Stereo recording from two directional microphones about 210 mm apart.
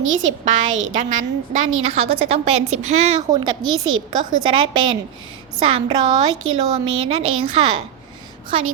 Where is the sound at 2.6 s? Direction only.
90° right.